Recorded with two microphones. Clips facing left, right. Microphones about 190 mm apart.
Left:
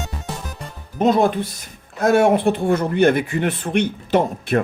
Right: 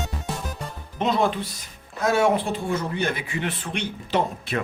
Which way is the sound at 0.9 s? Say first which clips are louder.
Left 6 dB; 45° left (ahead or behind).